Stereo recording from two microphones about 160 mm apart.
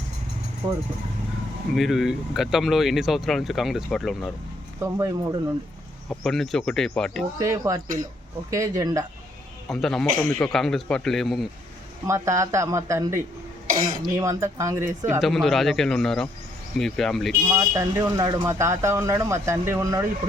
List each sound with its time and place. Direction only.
0.6 s speech: 15° right (ahead or behind)
1.7 s speech: centre (ahead or behind)
4.8 s speech: 20° right (ahead or behind)
6.1 s speech: centre (ahead or behind)
7.3 s speech: 20° right (ahead or behind)
9.6 s speech: centre (ahead or behind)
12.0 s speech: 20° right (ahead or behind)
14.2 s speech: 20° right (ahead or behind)
15.2 s speech: centre (ahead or behind)
17.5 s speech: 20° right (ahead or behind)